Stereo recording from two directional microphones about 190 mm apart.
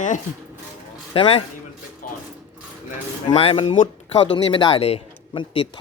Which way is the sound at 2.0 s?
45° left (ahead or behind).